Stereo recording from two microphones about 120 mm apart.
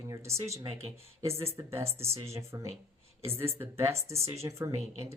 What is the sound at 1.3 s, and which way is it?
Speech, 55° right (ahead or behind).